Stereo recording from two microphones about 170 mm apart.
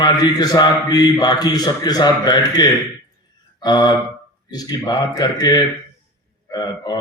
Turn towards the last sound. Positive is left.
turn(degrees=25)  # may be behind; listen again after turning